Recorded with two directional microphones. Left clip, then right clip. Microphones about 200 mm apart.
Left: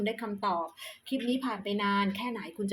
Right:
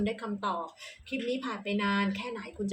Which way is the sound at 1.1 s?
30° left (ahead or behind).